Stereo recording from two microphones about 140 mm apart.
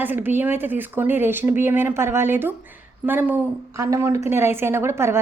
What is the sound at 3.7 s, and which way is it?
A woman's voice, 25° right (ahead or behind).